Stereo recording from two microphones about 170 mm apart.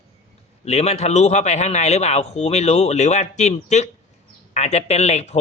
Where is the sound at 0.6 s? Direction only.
40° left (ahead or behind).